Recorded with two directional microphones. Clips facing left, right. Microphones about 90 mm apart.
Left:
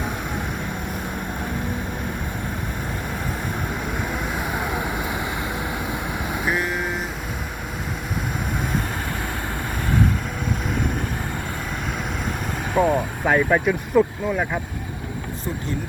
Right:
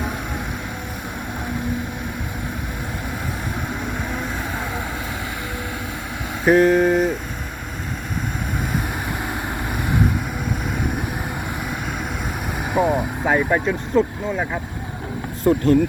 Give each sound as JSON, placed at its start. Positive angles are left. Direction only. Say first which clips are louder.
{"t": 4.5, "sound": "vehicle", "louder": "left 2 dB", "side_deg": 15}
{"t": 6.4, "sound": "vehicle", "louder": "right 11 dB", "side_deg": -85}
{"t": 6.8, "sound": "vehicle", "louder": "right 10 dB", "side_deg": -40}
{"t": 12.7, "sound": "vehicle", "louder": "even", "side_deg": -15}
{"t": 13.2, "sound": "speech", "louder": "left 1 dB", "side_deg": -5}
{"t": 15.4, "sound": "speech", "louder": "right 14 dB", "side_deg": -55}